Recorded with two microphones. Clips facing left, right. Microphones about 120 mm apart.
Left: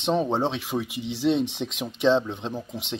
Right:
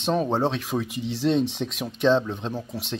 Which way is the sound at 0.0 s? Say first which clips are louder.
Even; 20° left (ahead or behind).